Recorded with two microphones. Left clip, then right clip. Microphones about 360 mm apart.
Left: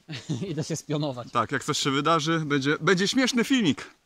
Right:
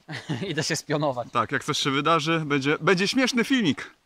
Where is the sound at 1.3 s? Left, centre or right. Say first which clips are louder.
Right 1 dB; centre.